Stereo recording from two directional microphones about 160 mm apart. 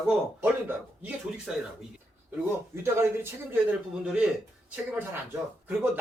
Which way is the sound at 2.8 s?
15° right (ahead or behind).